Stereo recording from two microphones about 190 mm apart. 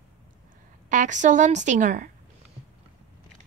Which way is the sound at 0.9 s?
40° right (ahead or behind).